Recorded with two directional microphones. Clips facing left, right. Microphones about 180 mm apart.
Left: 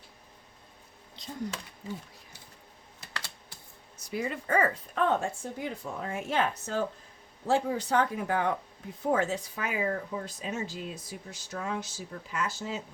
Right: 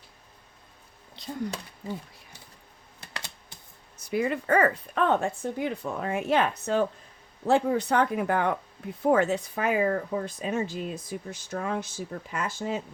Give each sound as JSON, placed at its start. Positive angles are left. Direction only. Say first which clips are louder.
{"t": 1.2, "sound": "a sound", "louder": "right 5 dB", "side_deg": -65}
{"t": 3.1, "sound": "computer keyboard", "louder": "right 1 dB", "side_deg": -15}
{"t": 3.9, "sound": "speech", "louder": "right 6 dB", "side_deg": -60}